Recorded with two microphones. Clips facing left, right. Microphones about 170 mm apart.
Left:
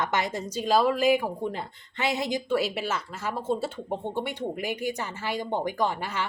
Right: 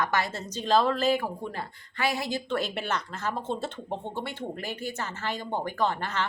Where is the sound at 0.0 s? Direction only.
20° left (ahead or behind).